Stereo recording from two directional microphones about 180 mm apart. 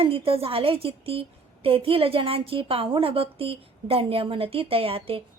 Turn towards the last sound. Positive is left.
turn(degrees=-30)  # may be behind; listen again after turning